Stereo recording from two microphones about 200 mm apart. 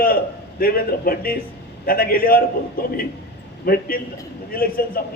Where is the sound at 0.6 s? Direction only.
45° left (ahead or behind).